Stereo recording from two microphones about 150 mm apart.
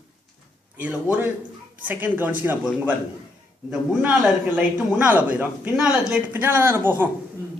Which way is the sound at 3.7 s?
5° right (ahead or behind).